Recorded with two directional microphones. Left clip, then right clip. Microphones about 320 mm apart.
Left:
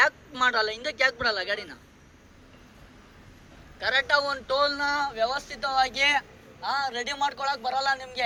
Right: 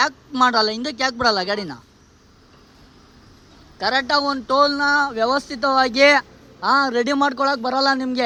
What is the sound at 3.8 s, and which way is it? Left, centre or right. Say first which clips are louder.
A man's voice: right 5 dB; centre.